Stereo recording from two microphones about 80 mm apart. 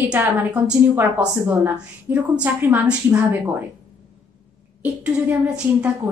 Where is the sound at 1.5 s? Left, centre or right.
Right.